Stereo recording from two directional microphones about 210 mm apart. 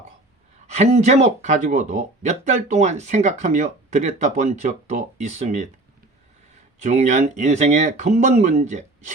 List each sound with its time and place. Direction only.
0.7 s speech: 30° right (ahead or behind)
6.8 s speech: 35° right (ahead or behind)